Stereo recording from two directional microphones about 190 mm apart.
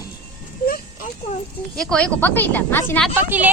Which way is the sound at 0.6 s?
50° left (ahead or behind).